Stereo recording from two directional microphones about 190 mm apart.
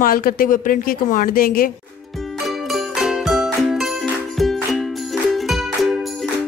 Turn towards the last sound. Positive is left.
turn(degrees=0)  # may be behind; listen again after turning